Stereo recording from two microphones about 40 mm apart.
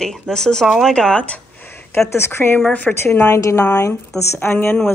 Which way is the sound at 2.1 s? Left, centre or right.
Left.